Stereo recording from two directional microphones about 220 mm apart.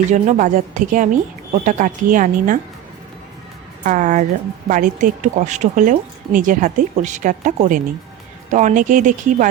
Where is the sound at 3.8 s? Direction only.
35° right (ahead or behind).